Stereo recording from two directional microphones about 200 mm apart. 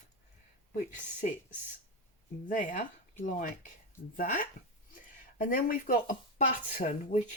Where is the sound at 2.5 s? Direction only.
40° left (ahead or behind).